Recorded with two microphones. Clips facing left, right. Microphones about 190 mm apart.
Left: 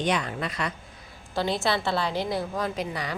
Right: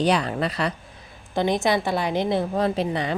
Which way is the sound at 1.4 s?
20° right (ahead or behind).